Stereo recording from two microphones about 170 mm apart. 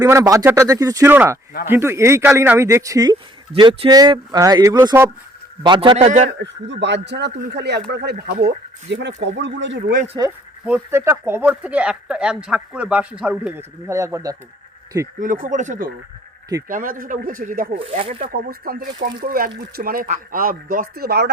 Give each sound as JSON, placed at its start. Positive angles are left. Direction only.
{"t": 0.0, "sound": "speech", "side_deg": -20}
{"t": 3.5, "sound": "a man's voice", "side_deg": -30}
{"t": 6.4, "sound": "speech", "side_deg": -90}
{"t": 8.4, "sound": "speech", "side_deg": -90}
{"t": 10.9, "sound": "speech", "side_deg": -15}
{"t": 15.2, "sound": "speech", "side_deg": -50}
{"t": 17.7, "sound": "a man's voice", "side_deg": -35}
{"t": 18.2, "sound": "speech", "side_deg": -60}